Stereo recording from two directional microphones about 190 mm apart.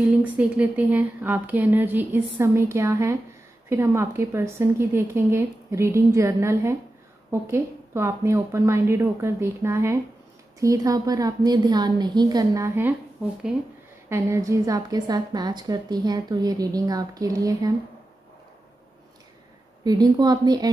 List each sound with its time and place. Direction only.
0.4 s a woman's voice: 10° right (ahead or behind)
14.0 s a woman's voice: 15° right (ahead or behind)
19.8 s a woman's voice: 20° right (ahead or behind)